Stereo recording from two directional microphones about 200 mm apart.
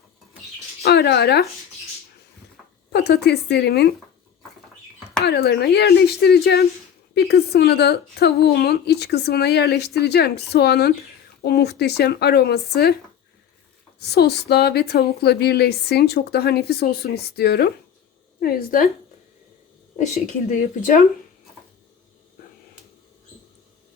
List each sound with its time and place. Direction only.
0.8 s speech: 55° left (ahead or behind)
2.9 s a woman's voice: 55° left (ahead or behind)
5.2 s a woman's voice: 55° left (ahead or behind)
14.0 s a woman's voice: 55° left (ahead or behind)
20.2 s speech: 40° left (ahead or behind)